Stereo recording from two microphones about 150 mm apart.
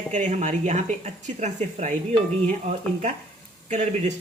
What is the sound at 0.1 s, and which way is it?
Speech, 55° right (ahead or behind).